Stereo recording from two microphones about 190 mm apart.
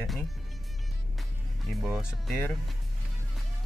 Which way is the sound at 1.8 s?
Centre (ahead or behind).